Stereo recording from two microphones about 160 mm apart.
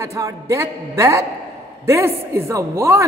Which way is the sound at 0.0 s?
20° right (ahead or behind).